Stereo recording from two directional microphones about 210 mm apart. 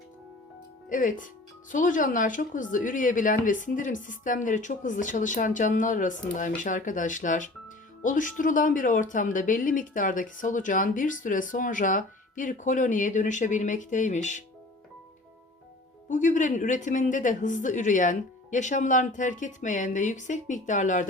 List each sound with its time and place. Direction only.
0.9 s speech: 40° left (ahead or behind)
16.0 s speech: 35° left (ahead or behind)